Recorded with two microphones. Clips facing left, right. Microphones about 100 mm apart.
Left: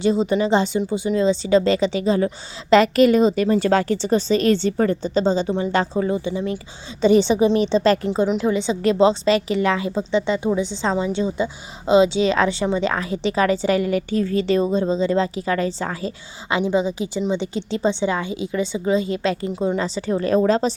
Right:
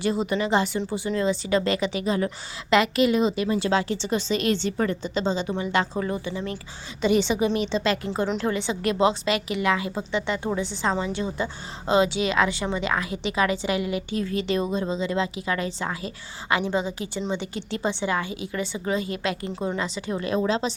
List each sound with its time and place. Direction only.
0.0 s a woman's voice: 25° left (ahead or behind)
6.0 s speech: 20° left (ahead or behind)
7.0 s a woman's voice: 35° left (ahead or behind)
8.0 s a woman's voice: 20° left (ahead or behind)
16.5 s a woman's voice: 20° left (ahead or behind)
19.8 s a woman's voice: 35° left (ahead or behind)